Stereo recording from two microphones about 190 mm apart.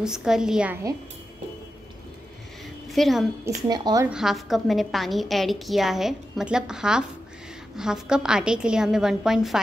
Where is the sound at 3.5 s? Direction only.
20° right (ahead or behind).